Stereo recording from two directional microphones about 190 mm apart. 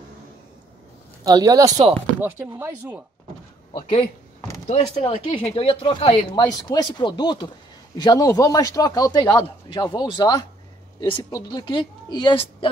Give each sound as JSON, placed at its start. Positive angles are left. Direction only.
{"t": 1.2, "sound": "speech", "side_deg": -20}
{"t": 3.7, "sound": "a man's voice", "side_deg": 30}